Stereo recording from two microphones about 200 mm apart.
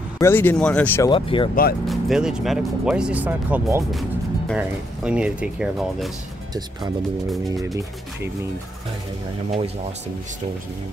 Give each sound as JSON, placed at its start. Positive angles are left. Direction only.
{"t": 0.2, "sound": "speech", "side_deg": 10}
{"t": 1.1, "sound": "speech", "side_deg": 25}
{"t": 1.5, "sound": "speech", "side_deg": 45}
{"t": 1.9, "sound": "speech", "side_deg": 0}